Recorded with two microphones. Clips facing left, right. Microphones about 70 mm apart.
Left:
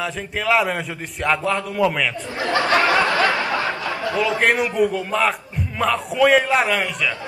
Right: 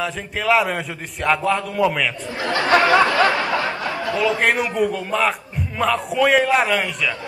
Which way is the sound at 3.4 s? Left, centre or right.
Left.